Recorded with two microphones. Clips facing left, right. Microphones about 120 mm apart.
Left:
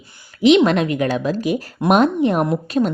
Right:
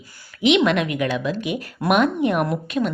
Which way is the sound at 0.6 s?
35° left (ahead or behind).